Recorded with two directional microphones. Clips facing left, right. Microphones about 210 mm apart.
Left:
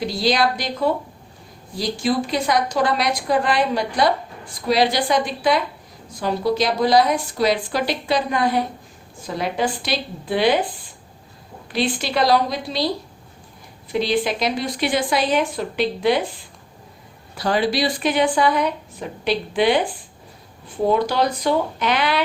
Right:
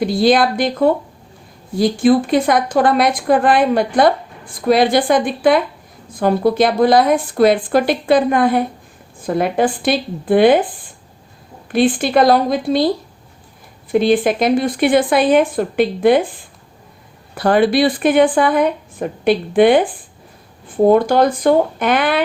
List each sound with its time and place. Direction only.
0.0 s a woman's voice: 55° right (ahead or behind)
13.9 s a woman's voice: 50° right (ahead or behind)